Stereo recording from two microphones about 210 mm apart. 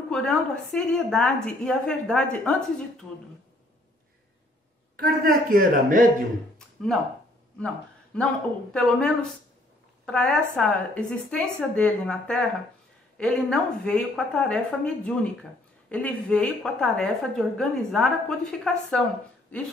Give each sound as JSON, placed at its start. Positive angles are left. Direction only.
{"t": 0.1, "sound": "a woman's voice", "side_deg": 5}
{"t": 4.9, "sound": "a woman's voice", "side_deg": -45}
{"t": 7.6, "sound": "a man's voice", "side_deg": 5}